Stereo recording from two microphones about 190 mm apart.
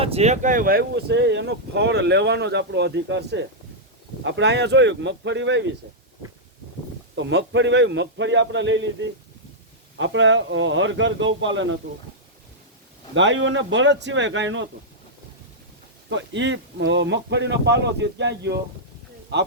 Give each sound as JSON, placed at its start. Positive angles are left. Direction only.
{"t": 0.0, "sound": "speech", "side_deg": -35}
{"t": 7.2, "sound": "speech", "side_deg": -75}
{"t": 13.1, "sound": "speech", "side_deg": -80}
{"t": 16.0, "sound": "speech", "side_deg": -70}